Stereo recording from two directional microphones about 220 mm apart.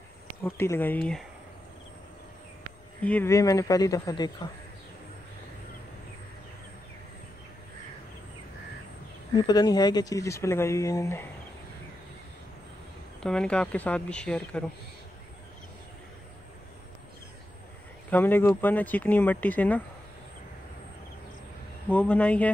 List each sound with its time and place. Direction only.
0.4 s speech: 10° left (ahead or behind)
3.0 s speech: 5° left (ahead or behind)
9.3 s speech: 20° left (ahead or behind)
13.2 s speech: 5° left (ahead or behind)
18.1 s speech: 10° left (ahead or behind)
21.8 s speech: 5° left (ahead or behind)